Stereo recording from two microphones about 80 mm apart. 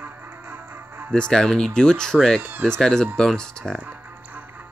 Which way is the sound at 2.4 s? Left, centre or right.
Right.